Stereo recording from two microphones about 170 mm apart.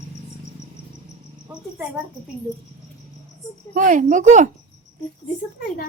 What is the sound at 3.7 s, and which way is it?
Speech, 50° right (ahead or behind).